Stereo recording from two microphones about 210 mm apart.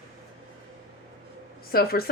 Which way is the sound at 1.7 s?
45° left (ahead or behind).